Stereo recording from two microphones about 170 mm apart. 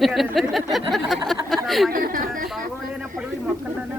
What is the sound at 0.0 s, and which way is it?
Speech, centre (ahead or behind).